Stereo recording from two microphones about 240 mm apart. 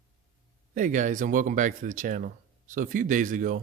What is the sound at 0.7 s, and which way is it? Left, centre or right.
Speech, right.